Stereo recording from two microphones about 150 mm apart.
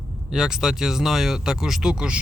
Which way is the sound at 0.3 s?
5° right (ahead or behind).